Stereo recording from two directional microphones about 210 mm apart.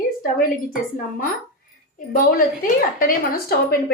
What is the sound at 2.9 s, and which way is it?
Speech, 40° left (ahead or behind).